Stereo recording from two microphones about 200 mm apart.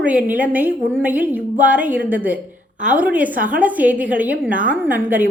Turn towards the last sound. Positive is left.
turn(degrees=-10)  # may be behind; listen again after turning